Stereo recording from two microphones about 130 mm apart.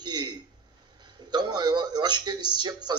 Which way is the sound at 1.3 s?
35° right (ahead or behind).